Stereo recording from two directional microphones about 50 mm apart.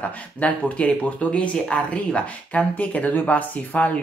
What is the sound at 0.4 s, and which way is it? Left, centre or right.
Speech, left.